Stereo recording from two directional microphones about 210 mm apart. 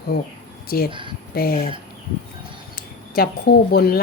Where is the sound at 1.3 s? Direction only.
45° left (ahead or behind).